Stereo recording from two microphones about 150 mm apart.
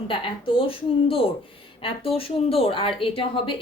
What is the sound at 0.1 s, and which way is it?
Speech, 35° left (ahead or behind).